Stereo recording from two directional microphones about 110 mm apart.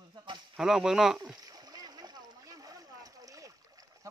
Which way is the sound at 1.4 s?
35° right (ahead or behind).